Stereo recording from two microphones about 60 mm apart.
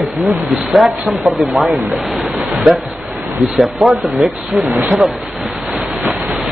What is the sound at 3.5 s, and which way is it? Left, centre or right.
Speech, centre.